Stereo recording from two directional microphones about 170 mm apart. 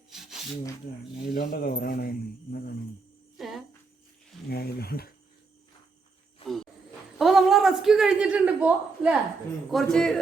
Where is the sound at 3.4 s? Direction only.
Centre (ahead or behind).